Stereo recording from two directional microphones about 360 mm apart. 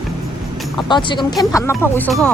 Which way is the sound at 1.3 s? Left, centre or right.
Centre.